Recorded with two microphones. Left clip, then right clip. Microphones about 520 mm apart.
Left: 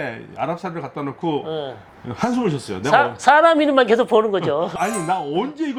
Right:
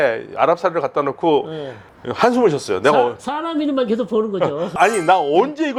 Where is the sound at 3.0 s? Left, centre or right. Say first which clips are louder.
Left 5 dB; left.